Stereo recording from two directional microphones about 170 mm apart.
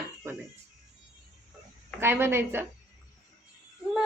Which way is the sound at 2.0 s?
15° right (ahead or behind).